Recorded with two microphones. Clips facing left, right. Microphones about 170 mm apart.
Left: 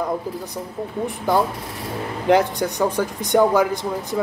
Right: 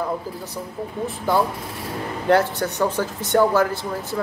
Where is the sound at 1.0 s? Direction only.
15° left (ahead or behind).